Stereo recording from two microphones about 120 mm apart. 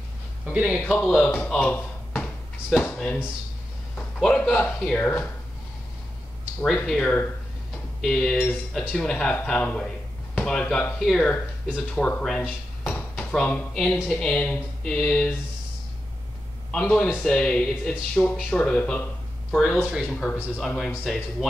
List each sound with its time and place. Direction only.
0.5 s speech: 10° right (ahead or behind)
1.2 s a sound: 10° left (ahead or behind)
3.9 s a man's voice: 10° left (ahead or behind)
6.6 s speech: centre (ahead or behind)
16.7 s speech: 5° left (ahead or behind)